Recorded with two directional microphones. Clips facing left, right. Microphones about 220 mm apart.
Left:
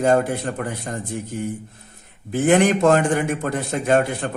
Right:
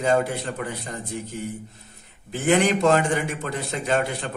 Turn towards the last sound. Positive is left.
turn(degrees=50)  # may be behind; listen again after turning